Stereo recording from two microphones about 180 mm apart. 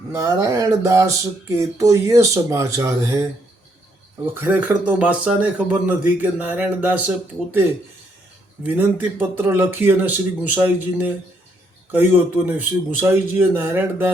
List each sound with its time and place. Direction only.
0.1 s speech: 15° right (ahead or behind)
4.4 s speech: 10° right (ahead or behind)
8.6 s speech: 10° right (ahead or behind)